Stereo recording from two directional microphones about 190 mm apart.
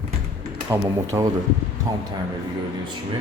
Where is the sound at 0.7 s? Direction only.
15° right (ahead or behind).